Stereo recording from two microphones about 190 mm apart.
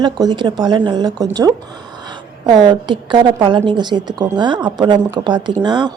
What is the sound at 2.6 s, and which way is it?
A woman's voice, 25° right (ahead or behind).